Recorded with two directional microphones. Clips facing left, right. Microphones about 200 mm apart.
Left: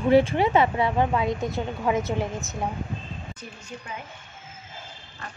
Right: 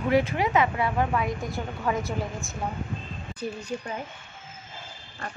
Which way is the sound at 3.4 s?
35° right (ahead or behind).